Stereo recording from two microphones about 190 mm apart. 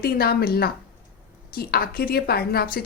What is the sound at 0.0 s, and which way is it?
A woman's voice, 55° left (ahead or behind).